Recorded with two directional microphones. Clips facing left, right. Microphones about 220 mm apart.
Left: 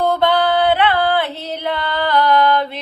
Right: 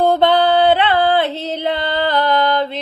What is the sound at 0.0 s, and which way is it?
Music, 25° right (ahead or behind).